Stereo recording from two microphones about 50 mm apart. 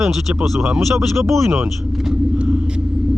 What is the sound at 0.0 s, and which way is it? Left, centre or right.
Speech, centre.